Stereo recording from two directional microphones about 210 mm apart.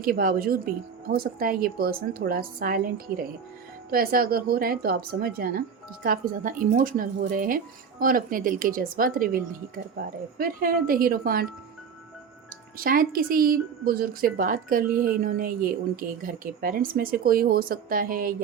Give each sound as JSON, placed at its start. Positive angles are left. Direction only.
{"t": 0.0, "sound": "speech", "side_deg": -45}
{"t": 12.8, "sound": "speech", "side_deg": -45}
{"t": 14.8, "sound": "speech", "side_deg": -10}
{"t": 15.2, "sound": "speech", "side_deg": -45}